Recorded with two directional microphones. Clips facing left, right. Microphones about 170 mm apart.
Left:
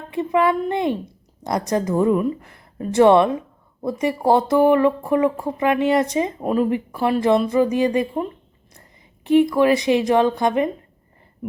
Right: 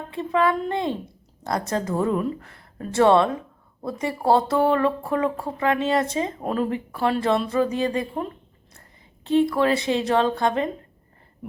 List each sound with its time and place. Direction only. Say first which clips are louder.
0.1 s a woman's voice: left 3 dB; 15° left (ahead or behind)
9.2 s speech: left 4 dB; 15° left (ahead or behind)